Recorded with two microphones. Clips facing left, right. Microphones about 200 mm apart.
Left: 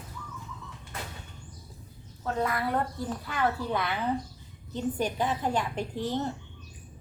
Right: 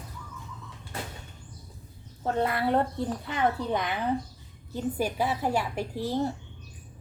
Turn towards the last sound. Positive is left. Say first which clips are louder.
# right 2 dB
turn(degrees=-10)  # may be behind; listen again after turning